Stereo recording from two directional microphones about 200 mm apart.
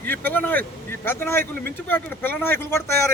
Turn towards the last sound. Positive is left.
turn(degrees=10)  # may be behind; listen again after turning